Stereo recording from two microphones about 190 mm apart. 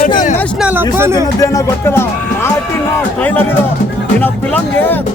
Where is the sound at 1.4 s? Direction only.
15° left (ahead or behind).